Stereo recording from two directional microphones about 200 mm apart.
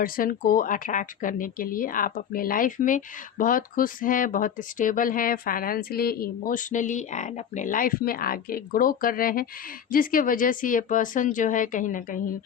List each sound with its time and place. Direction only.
0.0 s speech: 45° left (ahead or behind)